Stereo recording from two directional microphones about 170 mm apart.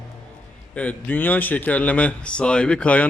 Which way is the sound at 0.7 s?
10° left (ahead or behind).